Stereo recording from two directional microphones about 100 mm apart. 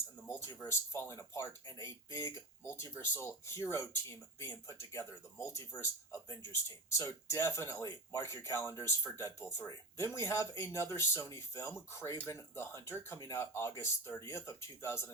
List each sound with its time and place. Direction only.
0.3 s speech: 30° left (ahead or behind)